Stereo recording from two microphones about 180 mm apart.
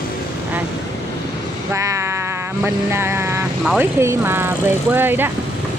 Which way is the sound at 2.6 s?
15° right (ahead or behind).